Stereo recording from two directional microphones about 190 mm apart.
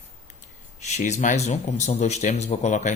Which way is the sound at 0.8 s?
40° left (ahead or behind).